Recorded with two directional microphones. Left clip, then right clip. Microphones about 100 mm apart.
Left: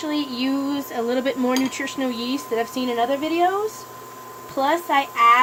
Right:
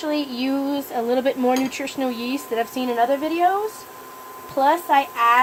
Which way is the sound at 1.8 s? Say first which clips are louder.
Even; 90° right.